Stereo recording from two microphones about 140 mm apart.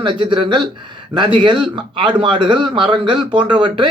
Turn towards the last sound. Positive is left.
turn(degrees=-35)  # may be behind; listen again after turning